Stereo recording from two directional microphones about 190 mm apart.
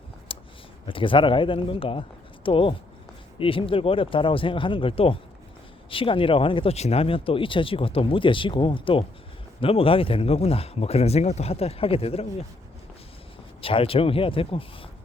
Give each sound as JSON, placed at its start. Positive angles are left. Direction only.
{"t": 0.3, "sound": "a sound", "side_deg": 30}
{"t": 0.9, "sound": "speech", "side_deg": 25}
{"t": 13.6, "sound": "speech", "side_deg": 30}